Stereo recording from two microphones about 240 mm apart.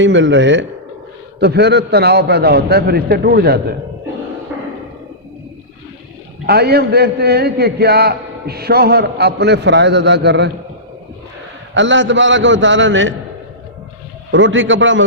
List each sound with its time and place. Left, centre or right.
0.0 s a man's voice: right
6.4 s a man's voice: right
11.7 s a man's voice: right
14.3 s a man's voice: right